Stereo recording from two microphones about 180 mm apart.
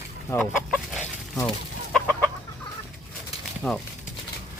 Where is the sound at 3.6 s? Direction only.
5° left (ahead or behind).